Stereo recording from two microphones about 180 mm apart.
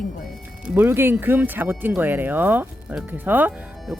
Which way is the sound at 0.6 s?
10° right (ahead or behind).